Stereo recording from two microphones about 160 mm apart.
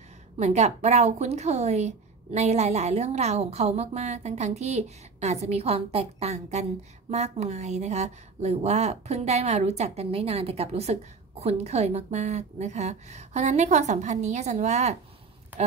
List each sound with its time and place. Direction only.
0.4 s a woman's voice: 45° right (ahead or behind)